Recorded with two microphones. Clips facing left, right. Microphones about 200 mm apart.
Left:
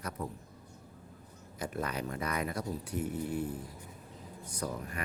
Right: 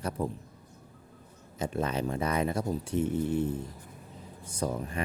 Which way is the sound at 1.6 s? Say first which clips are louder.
Right 6 dB; 25° right (ahead or behind).